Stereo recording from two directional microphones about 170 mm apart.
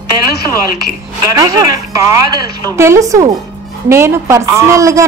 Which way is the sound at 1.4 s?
20° right (ahead or behind).